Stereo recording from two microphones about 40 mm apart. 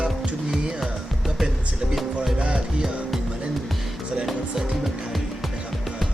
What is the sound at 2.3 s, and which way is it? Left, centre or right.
Music, right.